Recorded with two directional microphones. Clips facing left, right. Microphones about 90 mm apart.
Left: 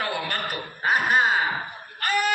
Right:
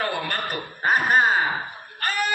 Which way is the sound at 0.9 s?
40° right (ahead or behind).